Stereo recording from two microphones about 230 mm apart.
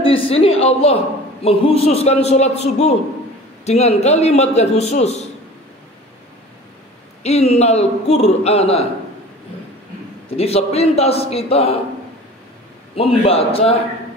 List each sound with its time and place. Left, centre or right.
0.0 s a woman's voice: left
7.2 s a man's voice: left
10.3 s a man's voice: left
12.9 s a man's voice: left